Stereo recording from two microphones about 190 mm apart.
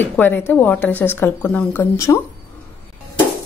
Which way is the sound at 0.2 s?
10° left (ahead or behind).